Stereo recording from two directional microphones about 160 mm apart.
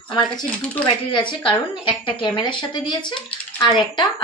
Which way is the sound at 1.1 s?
30° left (ahead or behind).